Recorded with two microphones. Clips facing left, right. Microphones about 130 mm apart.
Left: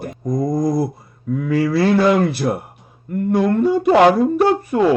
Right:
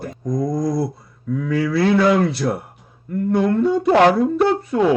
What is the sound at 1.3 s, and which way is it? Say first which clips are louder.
Speech: left 2 dB; 50° left (ahead or behind).